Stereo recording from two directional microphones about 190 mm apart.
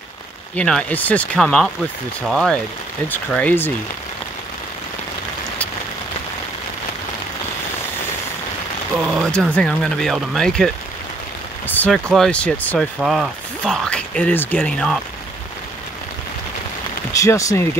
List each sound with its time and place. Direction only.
0.6 s speech: 5° left (ahead or behind)
9.0 s speech: centre (ahead or behind)
17.1 s speech: 15° left (ahead or behind)